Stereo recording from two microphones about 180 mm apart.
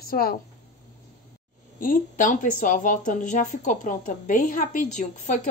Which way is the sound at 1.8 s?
50° left (ahead or behind).